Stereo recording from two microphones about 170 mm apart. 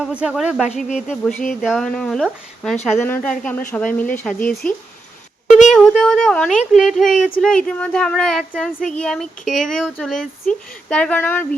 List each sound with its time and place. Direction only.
0.0 s speech: 5° right (ahead or behind)
0.7 s speech: 45° left (ahead or behind)
0.9 s a woman's voice: 5° right (ahead or behind)